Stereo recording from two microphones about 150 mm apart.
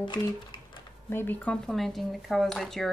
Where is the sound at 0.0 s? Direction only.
30° left (ahead or behind).